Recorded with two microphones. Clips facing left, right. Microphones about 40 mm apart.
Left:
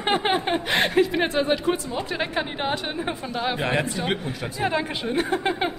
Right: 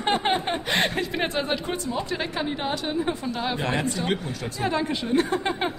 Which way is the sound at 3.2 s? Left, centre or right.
Centre.